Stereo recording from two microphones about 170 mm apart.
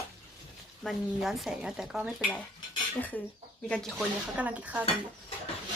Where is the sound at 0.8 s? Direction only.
Centre (ahead or behind).